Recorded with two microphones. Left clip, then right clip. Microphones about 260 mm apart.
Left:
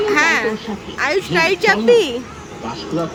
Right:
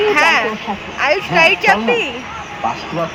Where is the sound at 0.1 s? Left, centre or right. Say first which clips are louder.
Even; centre.